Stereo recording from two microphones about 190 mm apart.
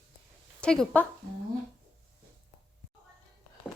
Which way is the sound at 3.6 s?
5° right (ahead or behind).